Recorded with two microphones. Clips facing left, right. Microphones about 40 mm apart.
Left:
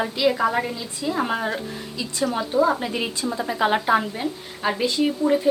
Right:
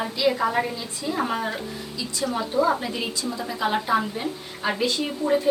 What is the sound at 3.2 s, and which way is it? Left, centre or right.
A woman's voice, left.